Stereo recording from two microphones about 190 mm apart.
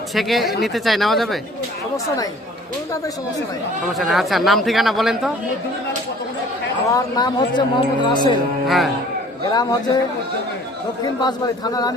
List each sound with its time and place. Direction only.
0.1 s speech: centre (ahead or behind)
3.8 s speech: centre (ahead or behind)
6.8 s a man's voice: 20° left (ahead or behind)
8.6 s speech: centre (ahead or behind)
9.5 s a man's voice: 20° left (ahead or behind)
11.0 s a man's voice: 20° left (ahead or behind)